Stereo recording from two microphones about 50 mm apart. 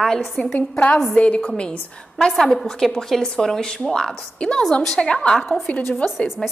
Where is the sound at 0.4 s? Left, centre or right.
Left.